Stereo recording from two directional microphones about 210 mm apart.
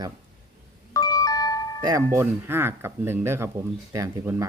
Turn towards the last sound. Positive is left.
turn(degrees=-15)  # may be behind; listen again after turning